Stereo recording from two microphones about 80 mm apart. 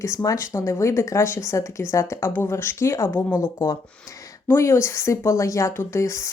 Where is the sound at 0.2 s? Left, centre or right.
Left.